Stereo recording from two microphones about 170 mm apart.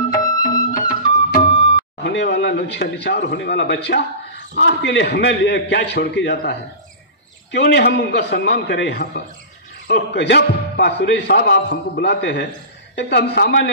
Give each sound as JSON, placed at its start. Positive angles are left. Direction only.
{"t": 0.1, "sound": "music", "side_deg": 20}
{"t": 0.7, "sound": "music", "side_deg": 50}
{"t": 2.0, "sound": "speech", "side_deg": 90}
{"t": 7.5, "sound": "a man's voice", "side_deg": 85}